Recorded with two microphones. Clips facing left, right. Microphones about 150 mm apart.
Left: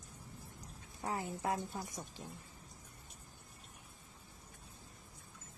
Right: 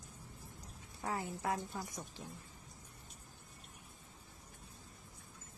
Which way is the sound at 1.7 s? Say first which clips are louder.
Even; 15° left (ahead or behind).